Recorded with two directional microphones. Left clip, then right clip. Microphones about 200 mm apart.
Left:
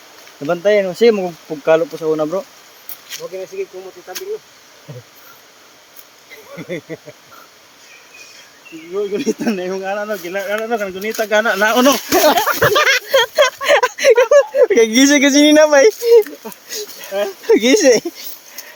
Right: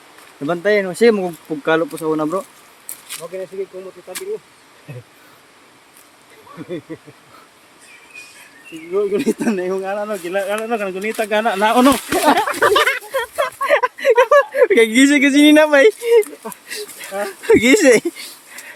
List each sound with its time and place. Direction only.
0.4 s speech: 5° left (ahead or behind)
6.7 s speech: 40° left (ahead or behind)
9.0 s speech: 35° right (ahead or behind)
9.4 s speech: centre (ahead or behind)
11.5 s speech: 5° left (ahead or behind)
12.5 s a sound: 50° left (ahead or behind)
13.7 s a sound: 30° left (ahead or behind)
14.3 s speech: 5° left (ahead or behind)